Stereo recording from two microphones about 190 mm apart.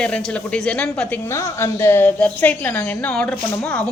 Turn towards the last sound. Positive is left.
turn(degrees=5)  # may be behind; listen again after turning